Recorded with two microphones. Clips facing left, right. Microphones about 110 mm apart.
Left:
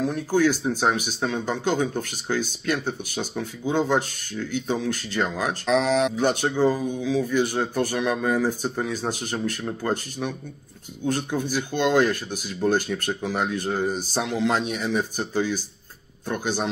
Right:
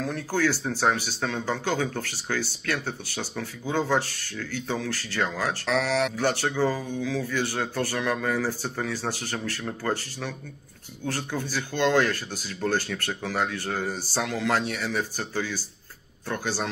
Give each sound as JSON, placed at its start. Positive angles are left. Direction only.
{"t": 0.0, "sound": "speech", "side_deg": 15}